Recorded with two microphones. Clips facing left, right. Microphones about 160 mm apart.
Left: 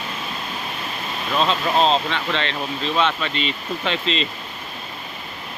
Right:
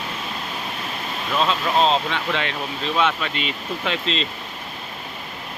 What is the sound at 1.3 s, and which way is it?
Speech, centre (ahead or behind).